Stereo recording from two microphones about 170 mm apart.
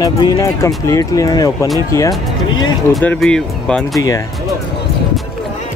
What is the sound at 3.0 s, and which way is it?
Speech, 5° left (ahead or behind).